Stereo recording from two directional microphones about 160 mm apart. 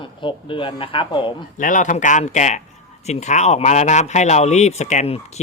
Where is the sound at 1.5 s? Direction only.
55° left (ahead or behind).